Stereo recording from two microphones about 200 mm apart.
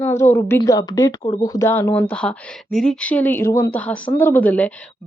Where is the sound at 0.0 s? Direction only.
15° left (ahead or behind).